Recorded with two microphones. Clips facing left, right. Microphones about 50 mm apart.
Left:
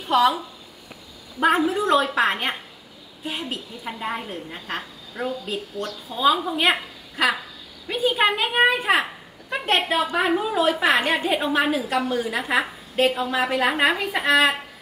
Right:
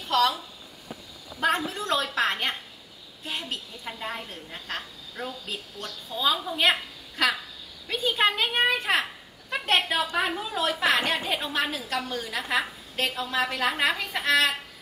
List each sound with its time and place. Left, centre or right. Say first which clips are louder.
0.1 s speech: left 5 dB; centre
1.4 s a woman's voice: left 7 dB; centre